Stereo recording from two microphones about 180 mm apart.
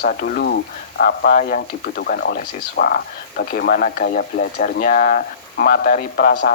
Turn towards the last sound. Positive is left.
turn(degrees=50)  # may be behind; listen again after turning